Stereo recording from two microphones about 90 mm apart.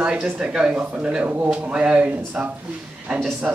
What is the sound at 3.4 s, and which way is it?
Speech, 5° right (ahead or behind).